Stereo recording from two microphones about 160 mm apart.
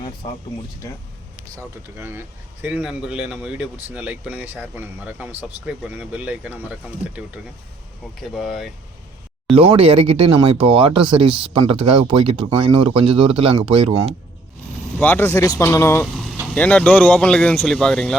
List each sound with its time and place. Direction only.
1.5 s speech: 15° right (ahead or behind)
9.5 s speech: 35° right (ahead or behind)
14.9 s speech: 15° left (ahead or behind)